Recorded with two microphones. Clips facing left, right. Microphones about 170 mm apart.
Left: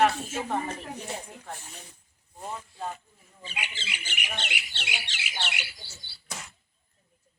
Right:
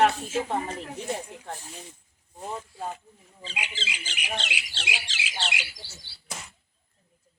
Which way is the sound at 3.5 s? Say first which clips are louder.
Right 2 dB; 90° right.